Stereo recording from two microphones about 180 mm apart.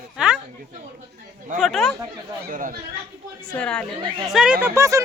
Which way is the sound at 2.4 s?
50° right (ahead or behind).